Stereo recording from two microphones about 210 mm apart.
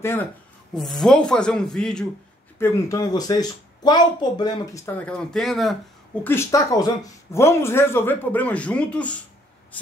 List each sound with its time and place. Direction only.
0.0 s a woman's voice: 10° left (ahead or behind)
0.7 s speech: centre (ahead or behind)
2.6 s a woman's voice: 15° left (ahead or behind)
6.2 s a woman's voice: 10° left (ahead or behind)